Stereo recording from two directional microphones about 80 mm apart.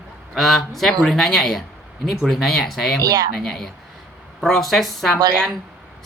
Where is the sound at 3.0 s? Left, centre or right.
Right.